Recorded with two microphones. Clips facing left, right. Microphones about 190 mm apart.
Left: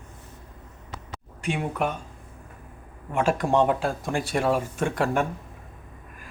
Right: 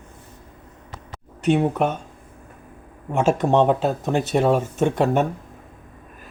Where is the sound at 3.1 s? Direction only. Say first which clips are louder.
Right 4 dB; 25° right (ahead or behind).